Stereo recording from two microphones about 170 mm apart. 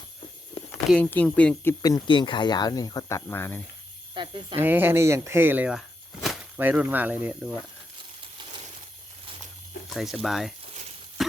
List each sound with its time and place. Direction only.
0.9 s speech: 5° left (ahead or behind)
1.8 s speech: 25° left (ahead or behind)
4.1 s cricket: 30° right (ahead or behind)
4.5 s speech: 10° right (ahead or behind)
6.2 s whip: 5° right (ahead or behind)
9.9 s speech: centre (ahead or behind)
11.2 s a sound: centre (ahead or behind)